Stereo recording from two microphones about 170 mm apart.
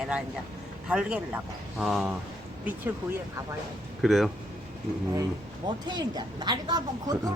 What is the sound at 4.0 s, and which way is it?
Speech, centre (ahead or behind).